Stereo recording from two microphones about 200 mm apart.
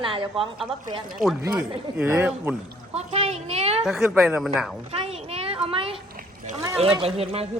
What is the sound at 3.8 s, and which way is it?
Speech, centre (ahead or behind).